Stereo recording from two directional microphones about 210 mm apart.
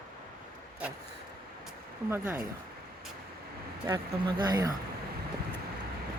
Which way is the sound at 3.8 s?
20° right (ahead or behind).